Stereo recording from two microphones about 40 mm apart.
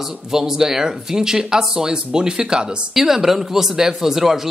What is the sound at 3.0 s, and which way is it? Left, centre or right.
Speech, centre.